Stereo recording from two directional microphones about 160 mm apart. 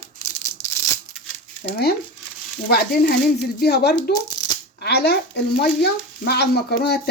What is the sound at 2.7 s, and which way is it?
Speech, 75° left (ahead or behind).